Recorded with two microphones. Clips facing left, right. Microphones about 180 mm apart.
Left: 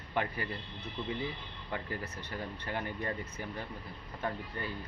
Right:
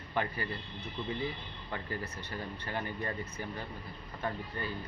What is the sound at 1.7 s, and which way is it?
Speech, 15° left (ahead or behind).